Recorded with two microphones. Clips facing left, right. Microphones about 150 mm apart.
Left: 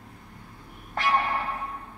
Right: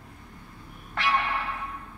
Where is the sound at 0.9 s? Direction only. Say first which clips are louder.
Left 2 dB; 40° left (ahead or behind).